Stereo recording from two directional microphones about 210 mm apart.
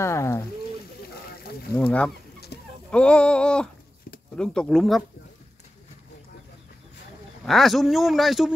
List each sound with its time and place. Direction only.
0.0 s speech: 15° left (ahead or behind)
1.8 s speech: 5° left (ahead or behind)
2.5 s a sound: 50° left (ahead or behind)
2.9 s speech: 5° left (ahead or behind)
7.4 s speech: centre (ahead or behind)